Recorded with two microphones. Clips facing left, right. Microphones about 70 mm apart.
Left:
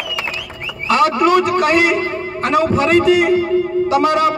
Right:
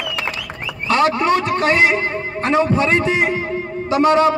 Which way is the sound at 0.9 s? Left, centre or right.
Right.